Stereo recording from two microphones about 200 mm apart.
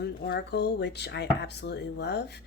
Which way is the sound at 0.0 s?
55° left (ahead or behind).